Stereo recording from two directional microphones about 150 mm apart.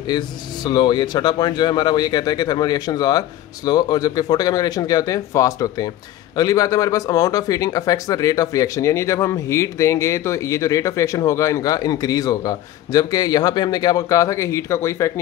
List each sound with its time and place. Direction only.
0.1 s speech: 30° left (ahead or behind)